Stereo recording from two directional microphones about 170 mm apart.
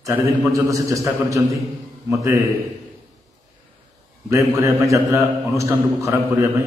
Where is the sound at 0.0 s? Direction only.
20° right (ahead or behind).